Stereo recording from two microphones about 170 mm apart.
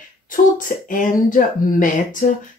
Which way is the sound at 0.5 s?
50° left (ahead or behind).